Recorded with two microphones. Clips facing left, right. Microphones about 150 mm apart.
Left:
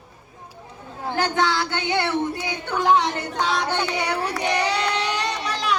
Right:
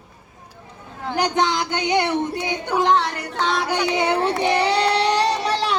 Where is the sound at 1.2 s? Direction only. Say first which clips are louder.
Right 2 dB; 20° right (ahead or behind).